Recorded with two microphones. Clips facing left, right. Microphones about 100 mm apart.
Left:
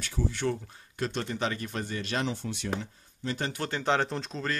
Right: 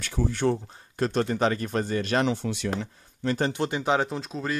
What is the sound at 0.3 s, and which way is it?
Speech, 40° right (ahead or behind).